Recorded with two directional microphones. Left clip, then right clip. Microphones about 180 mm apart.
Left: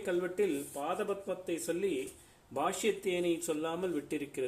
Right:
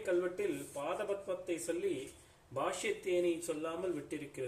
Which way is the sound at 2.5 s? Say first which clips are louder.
Left 4 dB; 45° left (ahead or behind).